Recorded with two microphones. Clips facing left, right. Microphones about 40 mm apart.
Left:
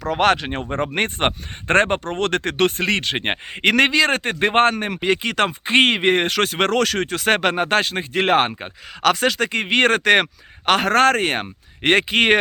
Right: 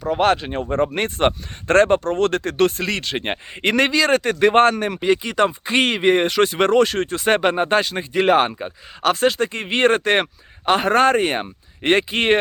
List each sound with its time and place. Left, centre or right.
0.0 s speech: left
0.3 s speech: left
0.7 s speech: left
3.5 s speech: left
9.0 s speech: left
10.7 s speech: left
11.8 s speech: left